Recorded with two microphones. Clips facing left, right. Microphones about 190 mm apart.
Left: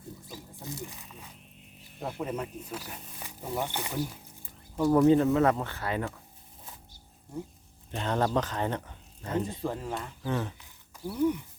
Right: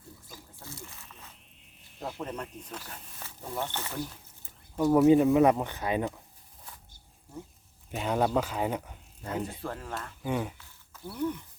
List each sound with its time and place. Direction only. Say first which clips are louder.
0.3 s a sound: left 6 dB; 15° left (ahead or behind)
0.9 s music: left 4 dB; 15° left (ahead or behind)
2.0 s speech: left 3 dB; centre (ahead or behind)
4.8 s speech: right 1 dB; 5° right (ahead or behind)
7.3 s a sound: left 5 dB; 5° right (ahead or behind)
7.9 s speech: right 1 dB; 10° right (ahead or behind)
9.6 s speech: left 4 dB; 15° left (ahead or behind)
10.2 s speech: right 1 dB; 10° right (ahead or behind)
10.6 s a sound: left 5 dB; 15° left (ahead or behind)